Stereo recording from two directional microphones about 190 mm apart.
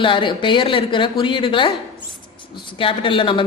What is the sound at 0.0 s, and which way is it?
Speech, 25° left (ahead or behind).